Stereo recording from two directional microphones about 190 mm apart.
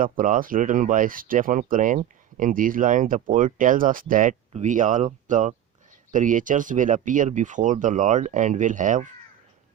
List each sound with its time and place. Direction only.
0.0 s speech: 45° right (ahead or behind)